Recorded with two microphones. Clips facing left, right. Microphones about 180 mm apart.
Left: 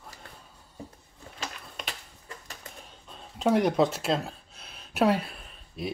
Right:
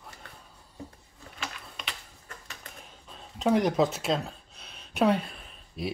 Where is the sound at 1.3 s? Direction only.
45° left (ahead or behind).